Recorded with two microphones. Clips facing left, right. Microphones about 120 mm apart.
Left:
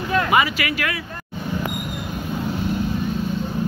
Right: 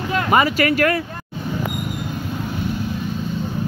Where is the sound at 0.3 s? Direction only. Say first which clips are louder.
Right 3 dB; 40° right (ahead or behind).